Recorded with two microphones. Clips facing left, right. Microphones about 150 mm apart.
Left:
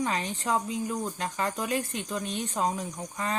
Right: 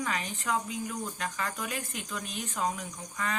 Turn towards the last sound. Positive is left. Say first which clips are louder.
# left 3 dB
turn(degrees=30)  # may be behind; listen again after turning